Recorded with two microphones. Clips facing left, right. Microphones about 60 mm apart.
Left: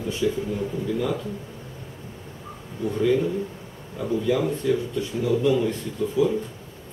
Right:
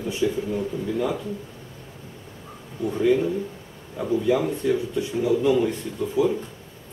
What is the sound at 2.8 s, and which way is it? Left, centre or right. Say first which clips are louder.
Speech: right 1 dB; centre.